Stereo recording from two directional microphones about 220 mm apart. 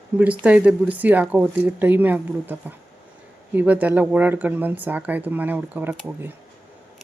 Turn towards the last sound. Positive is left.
turn(degrees=-10)  # may be behind; listen again after turning